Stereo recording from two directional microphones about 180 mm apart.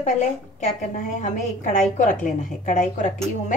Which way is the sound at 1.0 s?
40° left (ahead or behind).